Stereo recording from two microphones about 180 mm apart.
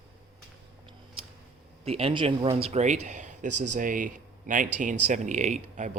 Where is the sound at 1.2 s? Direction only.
30° right (ahead or behind).